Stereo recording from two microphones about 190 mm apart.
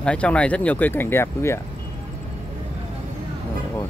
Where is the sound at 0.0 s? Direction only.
5° left (ahead or behind).